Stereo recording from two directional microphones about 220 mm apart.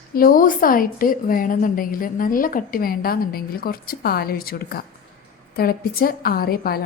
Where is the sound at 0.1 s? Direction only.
40° left (ahead or behind).